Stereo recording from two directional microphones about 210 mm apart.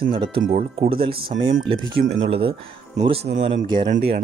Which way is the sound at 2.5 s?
25° right (ahead or behind).